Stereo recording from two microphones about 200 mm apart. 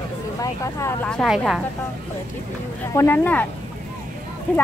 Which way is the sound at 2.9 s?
10° left (ahead or behind).